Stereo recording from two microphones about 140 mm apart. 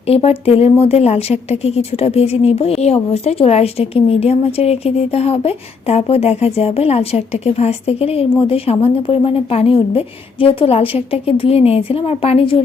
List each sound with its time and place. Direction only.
0.1 s speech: 45° left (ahead or behind)